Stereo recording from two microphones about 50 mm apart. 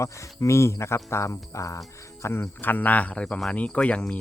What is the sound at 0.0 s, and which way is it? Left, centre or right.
Speech, left.